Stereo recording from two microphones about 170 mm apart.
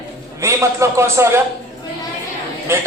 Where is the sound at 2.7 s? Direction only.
15° right (ahead or behind).